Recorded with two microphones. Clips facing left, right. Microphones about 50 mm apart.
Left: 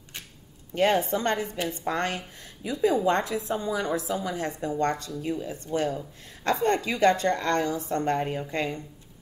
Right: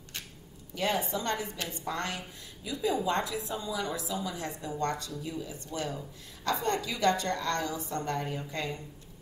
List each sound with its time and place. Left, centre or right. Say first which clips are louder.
0.7 s a woman's voice: left 7 dB; left